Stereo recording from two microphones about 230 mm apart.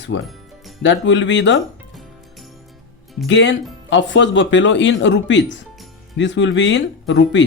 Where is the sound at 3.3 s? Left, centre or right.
Left.